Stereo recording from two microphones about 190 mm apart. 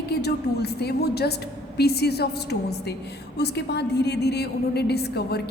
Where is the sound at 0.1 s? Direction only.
60° left (ahead or behind).